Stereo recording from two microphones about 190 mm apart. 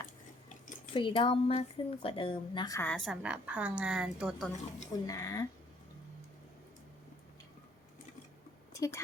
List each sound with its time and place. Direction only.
0.9 s speech: 25° left (ahead or behind)
2.9 s a woman's voice: centre (ahead or behind)
5.0 s speech: 15° left (ahead or behind)
8.7 s a sound: 15° left (ahead or behind)